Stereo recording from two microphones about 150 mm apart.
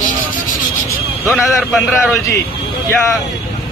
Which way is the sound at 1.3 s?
Centre (ahead or behind).